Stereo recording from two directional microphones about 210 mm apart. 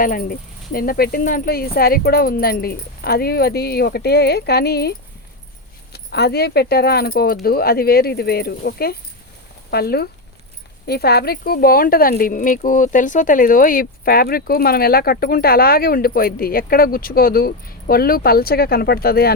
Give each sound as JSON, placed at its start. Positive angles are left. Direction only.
{"t": 0.0, "sound": "speech", "side_deg": 45}